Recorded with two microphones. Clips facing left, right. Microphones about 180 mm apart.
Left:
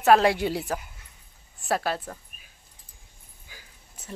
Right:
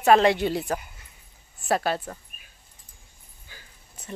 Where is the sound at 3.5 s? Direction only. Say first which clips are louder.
Even; 10° left (ahead or behind).